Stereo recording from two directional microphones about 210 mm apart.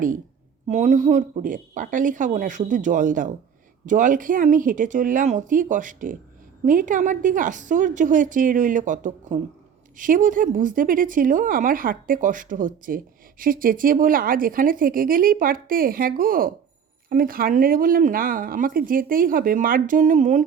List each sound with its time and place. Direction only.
0.7 s speech: 35° right (ahead or behind)